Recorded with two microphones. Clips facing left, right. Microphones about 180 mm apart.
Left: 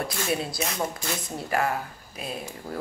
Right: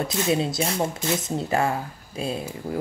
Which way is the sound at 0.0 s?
20° right (ahead or behind).